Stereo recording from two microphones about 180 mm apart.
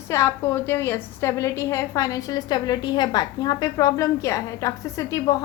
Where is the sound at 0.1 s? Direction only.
15° left (ahead or behind).